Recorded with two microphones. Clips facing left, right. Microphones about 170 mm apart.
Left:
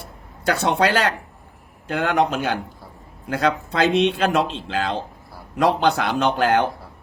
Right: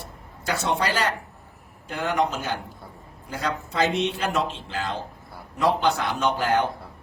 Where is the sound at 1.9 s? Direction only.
75° left (ahead or behind).